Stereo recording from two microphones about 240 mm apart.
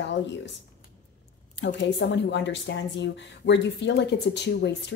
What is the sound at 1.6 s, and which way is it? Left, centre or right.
Speech, left.